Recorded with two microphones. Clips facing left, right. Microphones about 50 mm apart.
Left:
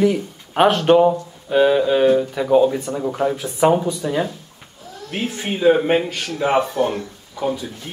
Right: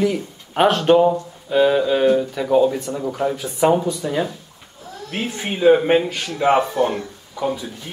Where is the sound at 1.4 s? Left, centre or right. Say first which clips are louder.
Left 1 dB; centre.